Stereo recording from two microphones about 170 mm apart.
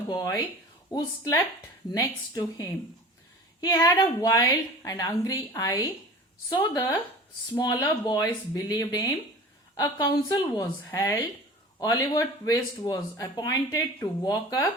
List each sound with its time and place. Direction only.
0.1 s speech: 25° left (ahead or behind)